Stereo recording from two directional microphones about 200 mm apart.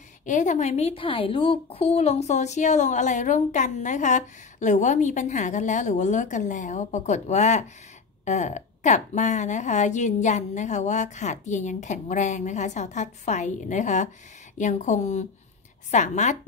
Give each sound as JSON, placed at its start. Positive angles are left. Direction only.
{"t": 0.2, "sound": "a child's voice", "side_deg": 40}